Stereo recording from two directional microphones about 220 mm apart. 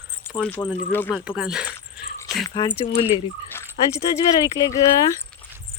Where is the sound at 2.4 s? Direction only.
20° left (ahead or behind).